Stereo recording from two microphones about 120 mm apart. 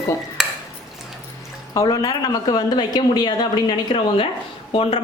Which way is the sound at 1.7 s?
30° left (ahead or behind).